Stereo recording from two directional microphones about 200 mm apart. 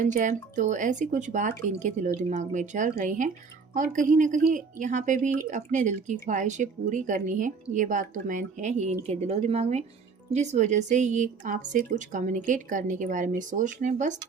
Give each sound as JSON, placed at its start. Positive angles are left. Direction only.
{"t": 0.0, "sound": "a woman's voice", "side_deg": -40}